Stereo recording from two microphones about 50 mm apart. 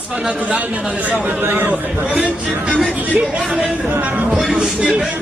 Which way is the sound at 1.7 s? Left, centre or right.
Right.